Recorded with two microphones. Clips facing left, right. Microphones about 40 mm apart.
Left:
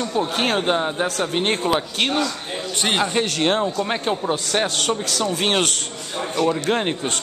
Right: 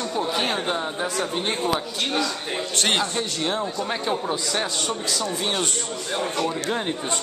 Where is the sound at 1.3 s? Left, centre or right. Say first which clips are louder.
Left 5 dB; left.